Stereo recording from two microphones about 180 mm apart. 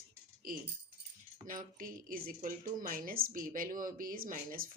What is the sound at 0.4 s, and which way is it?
Keys jangling, 55° right (ahead or behind).